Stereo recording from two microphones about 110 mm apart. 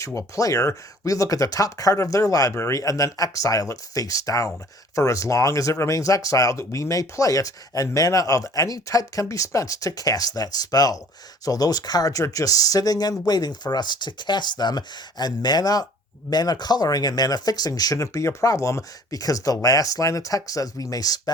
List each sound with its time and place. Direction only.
0.0 s speech: 30° left (ahead or behind)